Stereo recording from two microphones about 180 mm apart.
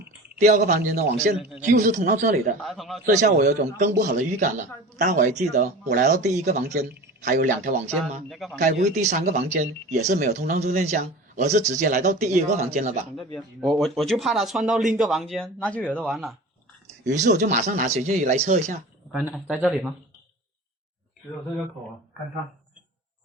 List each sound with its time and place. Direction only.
0.3 s a man's voice: 45° right (ahead or behind)
2.6 s speech: centre (ahead or behind)
3.2 s a man's voice: 45° right (ahead or behind)
8.3 s speech: centre (ahead or behind)
8.5 s speech: 45° right (ahead or behind)
13.1 s speech: centre (ahead or behind)
16.8 s a man's voice: 45° right (ahead or behind)
19.1 s speech: centre (ahead or behind)